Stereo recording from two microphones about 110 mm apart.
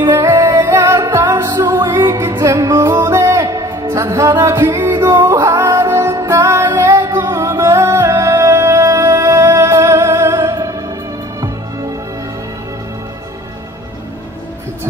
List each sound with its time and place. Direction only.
0.1 s music: 25° right (ahead or behind)